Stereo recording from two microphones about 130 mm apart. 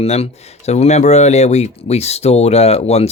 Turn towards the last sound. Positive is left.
turn(degrees=55)  # may be behind; listen again after turning